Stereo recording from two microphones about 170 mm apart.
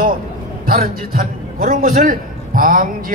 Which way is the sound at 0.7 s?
60° right (ahead or behind).